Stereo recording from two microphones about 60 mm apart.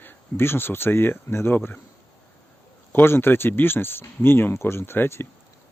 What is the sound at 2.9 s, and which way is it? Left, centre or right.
Speech, left.